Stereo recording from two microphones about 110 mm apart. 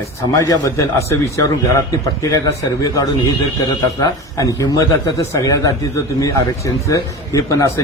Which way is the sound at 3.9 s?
35° left (ahead or behind).